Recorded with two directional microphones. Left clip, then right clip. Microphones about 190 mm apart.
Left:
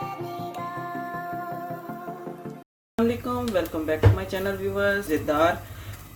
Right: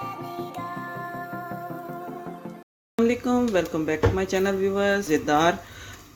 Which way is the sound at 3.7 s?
45° right (ahead or behind).